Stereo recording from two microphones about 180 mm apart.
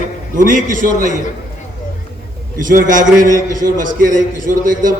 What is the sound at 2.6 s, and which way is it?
A man's voice, 50° right (ahead or behind).